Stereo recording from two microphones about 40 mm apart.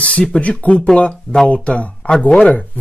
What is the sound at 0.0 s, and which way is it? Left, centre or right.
Speech, left.